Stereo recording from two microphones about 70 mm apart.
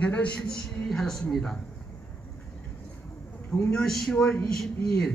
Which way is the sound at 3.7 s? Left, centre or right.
Centre.